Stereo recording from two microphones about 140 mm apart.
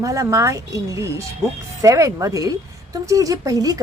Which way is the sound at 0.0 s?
20° right (ahead or behind).